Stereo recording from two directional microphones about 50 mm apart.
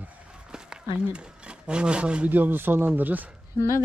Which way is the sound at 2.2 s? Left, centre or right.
Right.